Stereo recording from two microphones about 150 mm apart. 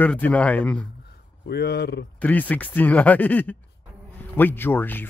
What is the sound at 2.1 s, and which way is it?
Speech, 10° left (ahead or behind).